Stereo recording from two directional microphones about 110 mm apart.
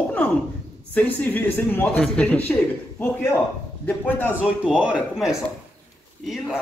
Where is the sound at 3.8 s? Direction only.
20° left (ahead or behind).